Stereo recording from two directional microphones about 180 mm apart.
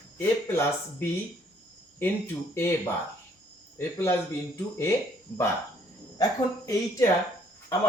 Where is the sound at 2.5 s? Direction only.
15° left (ahead or behind).